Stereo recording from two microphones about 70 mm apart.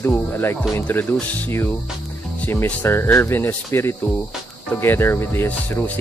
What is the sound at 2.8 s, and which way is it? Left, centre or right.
Speech, left.